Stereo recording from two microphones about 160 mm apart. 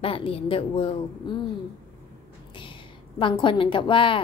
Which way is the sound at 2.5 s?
30° left (ahead or behind).